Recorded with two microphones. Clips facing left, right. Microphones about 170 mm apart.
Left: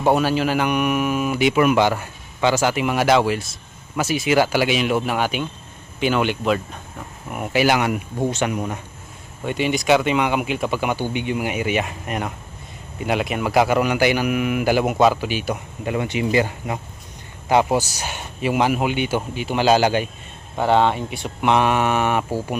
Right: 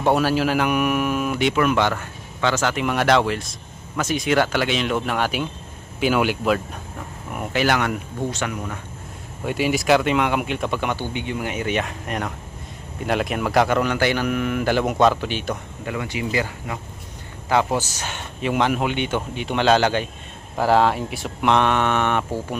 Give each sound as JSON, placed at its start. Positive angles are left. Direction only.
{"t": 0.0, "sound": "a man's voice", "side_deg": 0}
{"t": 9.4, "sound": "a man's voice", "side_deg": -5}
{"t": 15.8, "sound": "a man's voice", "side_deg": 20}
{"t": 20.6, "sound": "a man's voice", "side_deg": 0}